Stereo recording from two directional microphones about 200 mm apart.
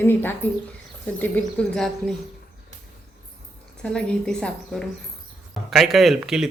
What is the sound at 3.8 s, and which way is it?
Speech, 5° left (ahead or behind).